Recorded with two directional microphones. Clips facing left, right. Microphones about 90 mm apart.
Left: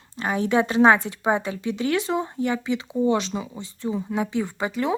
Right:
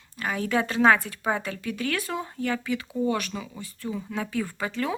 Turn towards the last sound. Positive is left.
turn(degrees=20)  # may be behind; listen again after turning